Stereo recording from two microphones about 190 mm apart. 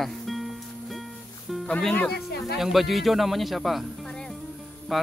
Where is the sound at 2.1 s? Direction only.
55° left (ahead or behind).